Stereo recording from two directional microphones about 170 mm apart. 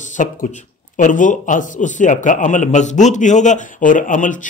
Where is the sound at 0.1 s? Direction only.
50° left (ahead or behind).